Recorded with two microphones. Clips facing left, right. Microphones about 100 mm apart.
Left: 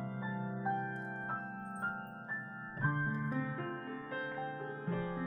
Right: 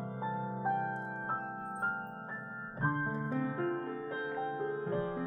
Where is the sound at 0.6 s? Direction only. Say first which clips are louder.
Right 4 dB; 50° right (ahead or behind).